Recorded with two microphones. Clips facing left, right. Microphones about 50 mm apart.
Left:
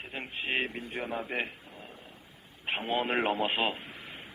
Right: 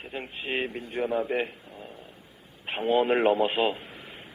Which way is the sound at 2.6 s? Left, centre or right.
Centre.